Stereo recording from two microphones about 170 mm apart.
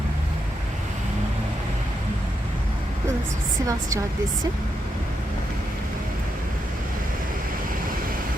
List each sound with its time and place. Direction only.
3.7 s a woman's voice: 20° right (ahead or behind)